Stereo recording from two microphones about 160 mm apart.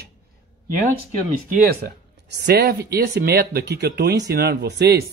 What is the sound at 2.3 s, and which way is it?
Speech, 90° right.